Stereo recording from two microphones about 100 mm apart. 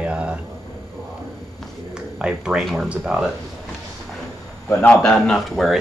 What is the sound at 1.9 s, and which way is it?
Speech, 10° right (ahead or behind).